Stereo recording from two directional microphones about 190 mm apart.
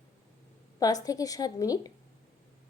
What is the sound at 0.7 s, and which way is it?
A woman's voice, 20° left (ahead or behind).